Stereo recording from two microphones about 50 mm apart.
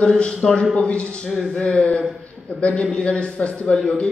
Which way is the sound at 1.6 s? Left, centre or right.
Centre.